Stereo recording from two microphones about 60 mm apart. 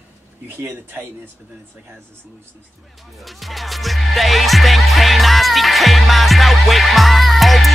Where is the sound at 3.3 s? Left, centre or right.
Centre.